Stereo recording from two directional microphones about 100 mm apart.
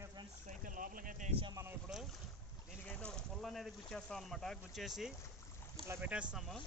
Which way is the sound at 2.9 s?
10° left (ahead or behind).